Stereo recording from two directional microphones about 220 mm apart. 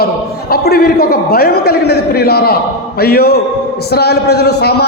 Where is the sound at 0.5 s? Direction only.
45° left (ahead or behind).